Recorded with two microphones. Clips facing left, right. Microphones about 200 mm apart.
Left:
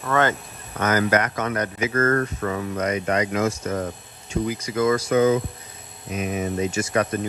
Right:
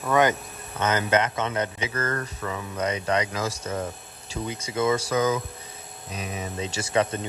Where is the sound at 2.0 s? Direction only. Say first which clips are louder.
Left 8 dB; 45° left (ahead or behind).